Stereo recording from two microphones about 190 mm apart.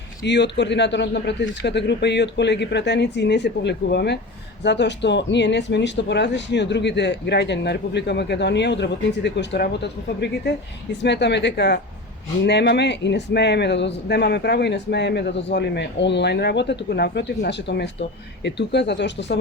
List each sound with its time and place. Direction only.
0.3 s speech: 65° left (ahead or behind)